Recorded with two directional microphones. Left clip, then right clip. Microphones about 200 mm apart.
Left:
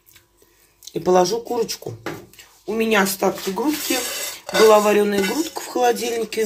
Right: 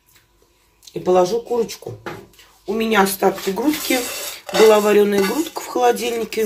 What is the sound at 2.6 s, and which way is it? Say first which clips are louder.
Speech: right 2 dB; 20° left (ahead or behind).